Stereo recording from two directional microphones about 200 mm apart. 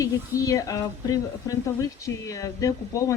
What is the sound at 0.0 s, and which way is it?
Speech, 15° left (ahead or behind).